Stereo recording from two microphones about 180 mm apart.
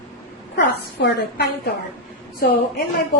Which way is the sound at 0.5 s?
70° left (ahead or behind).